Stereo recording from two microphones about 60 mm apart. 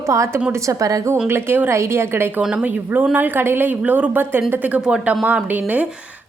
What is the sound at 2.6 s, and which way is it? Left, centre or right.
A woman's voice, right.